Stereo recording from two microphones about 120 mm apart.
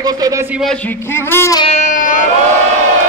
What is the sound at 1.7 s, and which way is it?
Music, 80° left.